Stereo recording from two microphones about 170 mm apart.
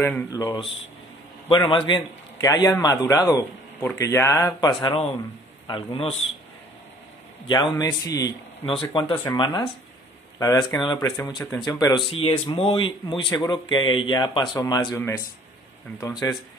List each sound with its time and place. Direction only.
0.0 s a man's voice: 15° left (ahead or behind)
5.7 s a man's voice: 35° left (ahead or behind)
7.4 s a man's voice: 30° left (ahead or behind)
9.1 s speech: 15° left (ahead or behind)
9.4 s a man's voice: 25° left (ahead or behind)